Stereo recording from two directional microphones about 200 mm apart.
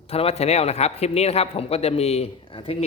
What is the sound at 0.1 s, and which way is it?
A man's voice, 30° left (ahead or behind).